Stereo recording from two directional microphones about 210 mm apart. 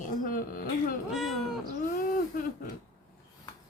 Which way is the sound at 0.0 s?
40° left (ahead or behind).